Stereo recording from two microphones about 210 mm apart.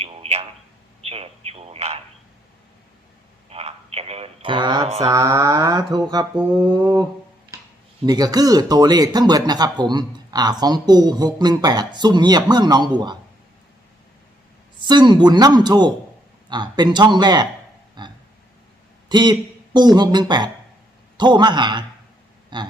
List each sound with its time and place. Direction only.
0.0 s a sound: 30° right (ahead or behind)
1.0 s speech: 30° right (ahead or behind)
3.5 s speech: 30° right (ahead or behind)
5.0 s a sound: 15° right (ahead or behind)
8.0 s speech: 20° right (ahead or behind)
14.8 s speech: 20° right (ahead or behind)
18.0 s burping: 20° right (ahead or behind)
19.0 s speech: 20° right (ahead or behind)
22.4 s a sound: 20° right (ahead or behind)